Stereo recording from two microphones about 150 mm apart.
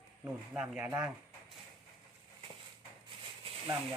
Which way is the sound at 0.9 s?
5° right (ahead or behind).